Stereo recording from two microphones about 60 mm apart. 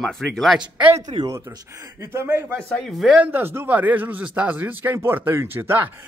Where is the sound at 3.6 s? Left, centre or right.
Right.